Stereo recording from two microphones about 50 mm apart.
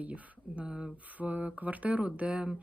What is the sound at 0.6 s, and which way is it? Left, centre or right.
Speech, centre.